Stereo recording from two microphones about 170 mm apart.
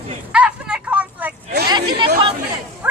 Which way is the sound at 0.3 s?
5° right (ahead or behind).